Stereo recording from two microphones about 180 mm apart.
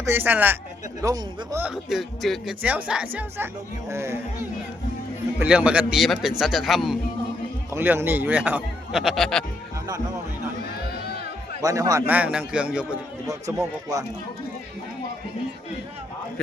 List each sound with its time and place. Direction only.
0.0 s a man's voice: 10° right (ahead or behind)
1.6 s speech: 5° right (ahead or behind)
5.4 s a man's voice: 5° right (ahead or behind)
7.7 s speech: 10° right (ahead or behind); by 9.4 s 5° left (ahead or behind)
11.6 s speech: 20° right (ahead or behind)
13.2 s speech: 20° right (ahead or behind)